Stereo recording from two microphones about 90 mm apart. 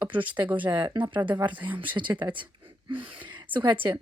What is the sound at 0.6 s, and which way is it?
Speech, 60° right (ahead or behind).